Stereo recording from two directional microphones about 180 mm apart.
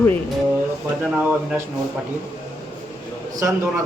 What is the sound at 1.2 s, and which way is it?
Speech, 10° right (ahead or behind).